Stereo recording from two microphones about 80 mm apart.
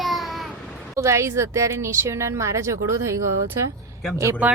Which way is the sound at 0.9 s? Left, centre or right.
Right.